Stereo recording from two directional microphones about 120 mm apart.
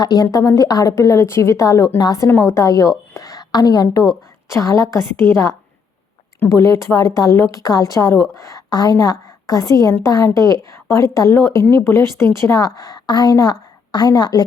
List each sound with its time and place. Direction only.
0.0 s a woman's voice: 30° left (ahead or behind)